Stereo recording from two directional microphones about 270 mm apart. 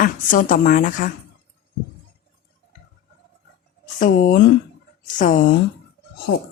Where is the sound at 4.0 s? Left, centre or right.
Left.